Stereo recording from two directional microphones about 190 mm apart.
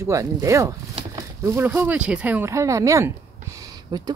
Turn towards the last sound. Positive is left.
turn(degrees=-20)  # may be behind; listen again after turning